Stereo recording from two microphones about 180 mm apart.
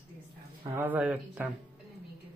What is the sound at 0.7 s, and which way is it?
Speech, 10° right (ahead or behind).